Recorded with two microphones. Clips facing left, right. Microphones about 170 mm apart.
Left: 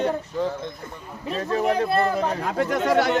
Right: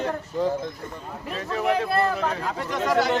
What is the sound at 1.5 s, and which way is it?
Speech, 30° left (ahead or behind).